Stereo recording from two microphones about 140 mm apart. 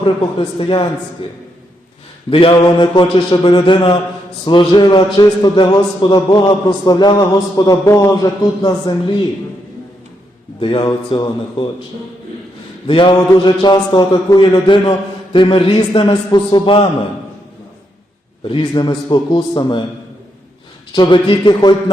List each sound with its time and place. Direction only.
0.0 s a man's voice: 40° left (ahead or behind)
10.6 s a man's voice: 35° left (ahead or behind)
12.9 s a man's voice: 40° left (ahead or behind)
18.4 s a man's voice: 35° left (ahead or behind)
20.9 s a man's voice: 35° left (ahead or behind)